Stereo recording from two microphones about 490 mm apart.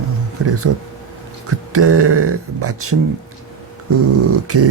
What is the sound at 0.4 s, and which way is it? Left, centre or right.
Speech, right.